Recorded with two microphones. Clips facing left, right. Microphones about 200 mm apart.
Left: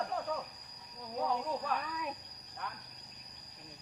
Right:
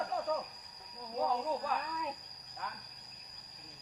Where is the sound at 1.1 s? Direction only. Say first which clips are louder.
Right 1 dB; centre (ahead or behind).